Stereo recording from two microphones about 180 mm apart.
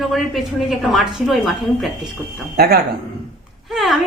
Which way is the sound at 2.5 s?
60° right (ahead or behind).